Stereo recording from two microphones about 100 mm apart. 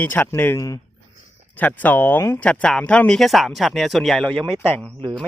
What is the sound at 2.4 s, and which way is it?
Speech, 10° left (ahead or behind).